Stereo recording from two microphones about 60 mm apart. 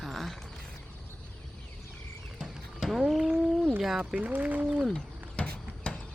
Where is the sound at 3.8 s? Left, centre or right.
Centre.